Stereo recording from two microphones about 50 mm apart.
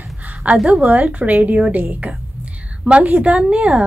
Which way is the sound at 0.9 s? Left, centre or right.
Right.